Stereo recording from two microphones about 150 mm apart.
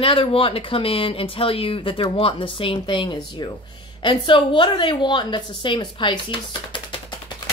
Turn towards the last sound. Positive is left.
turn(degrees=35)  # may be behind; listen again after turning